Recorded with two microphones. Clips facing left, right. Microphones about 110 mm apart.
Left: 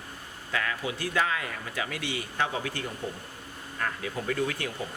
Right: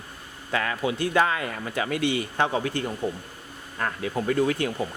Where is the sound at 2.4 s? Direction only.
35° right (ahead or behind).